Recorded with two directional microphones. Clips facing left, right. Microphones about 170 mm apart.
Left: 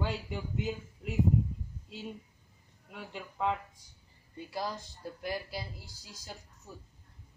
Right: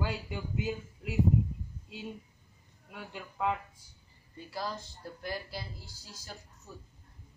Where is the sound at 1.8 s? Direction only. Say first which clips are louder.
Even; centre (ahead or behind).